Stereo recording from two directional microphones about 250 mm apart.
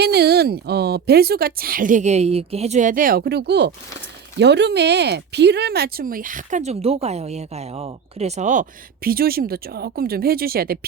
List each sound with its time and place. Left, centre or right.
0.0 s speech: right